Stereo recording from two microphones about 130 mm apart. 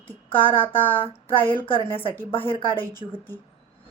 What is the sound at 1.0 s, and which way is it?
A woman's voice, 40° left (ahead or behind).